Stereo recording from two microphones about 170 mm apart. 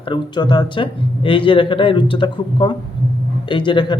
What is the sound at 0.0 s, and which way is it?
Speech, 25° left (ahead or behind).